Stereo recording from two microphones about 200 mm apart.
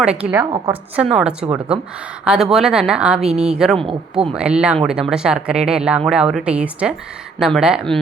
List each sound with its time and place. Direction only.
0.0 s speech: 5° right (ahead or behind)
3.2 s a woman's voice: 30° right (ahead or behind)
3.4 s speech: 5° right (ahead or behind)